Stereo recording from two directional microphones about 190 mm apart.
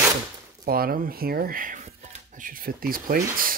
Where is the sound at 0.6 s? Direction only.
50° right (ahead or behind).